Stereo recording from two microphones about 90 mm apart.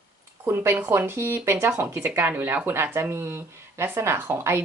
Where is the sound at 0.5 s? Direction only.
25° right (ahead or behind).